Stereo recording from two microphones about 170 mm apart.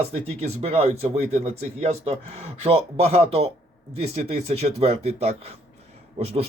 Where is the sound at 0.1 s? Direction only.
40° right (ahead or behind).